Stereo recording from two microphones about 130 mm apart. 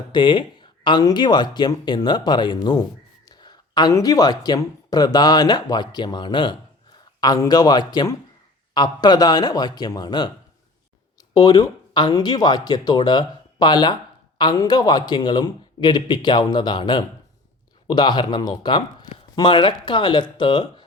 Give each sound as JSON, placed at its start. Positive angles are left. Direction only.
{"t": 0.1, "sound": "speech", "side_deg": 35}
{"t": 11.3, "sound": "speech", "side_deg": 30}